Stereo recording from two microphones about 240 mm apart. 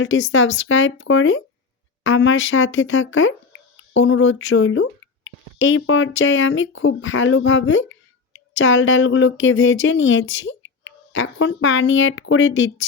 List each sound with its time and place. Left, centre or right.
0.0 s speech: left